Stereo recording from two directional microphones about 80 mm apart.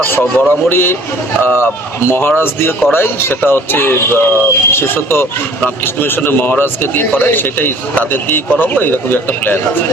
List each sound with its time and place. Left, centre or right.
0.0 s speech: left